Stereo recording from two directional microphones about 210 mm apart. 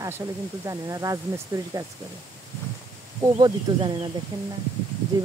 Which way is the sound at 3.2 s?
20° right (ahead or behind).